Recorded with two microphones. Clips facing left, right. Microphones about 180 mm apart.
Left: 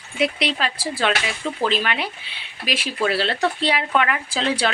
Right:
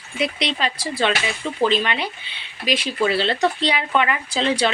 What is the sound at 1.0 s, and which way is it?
Speech, 5° left (ahead or behind).